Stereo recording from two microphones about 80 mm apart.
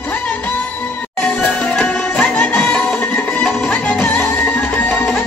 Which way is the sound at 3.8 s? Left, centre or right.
Centre.